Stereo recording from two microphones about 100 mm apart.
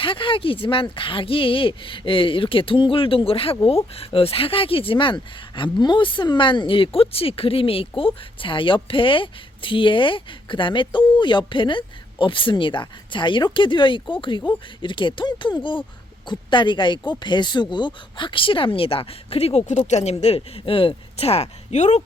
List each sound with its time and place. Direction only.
0.0 s speech: 60° left (ahead or behind); by 21.5 s 90° left